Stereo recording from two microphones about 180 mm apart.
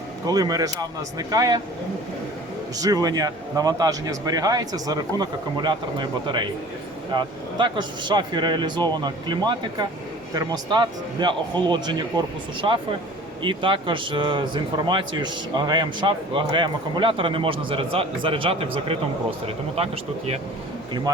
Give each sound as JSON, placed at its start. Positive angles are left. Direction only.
{"t": 0.3, "sound": "a man's voice", "side_deg": -20}
{"t": 2.7, "sound": "a man's voice", "side_deg": -20}